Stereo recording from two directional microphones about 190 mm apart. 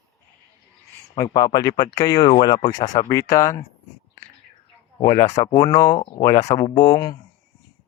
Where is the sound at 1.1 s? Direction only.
20° left (ahead or behind).